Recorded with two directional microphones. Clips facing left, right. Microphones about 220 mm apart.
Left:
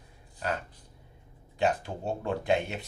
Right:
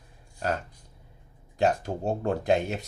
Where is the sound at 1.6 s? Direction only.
40° right (ahead or behind).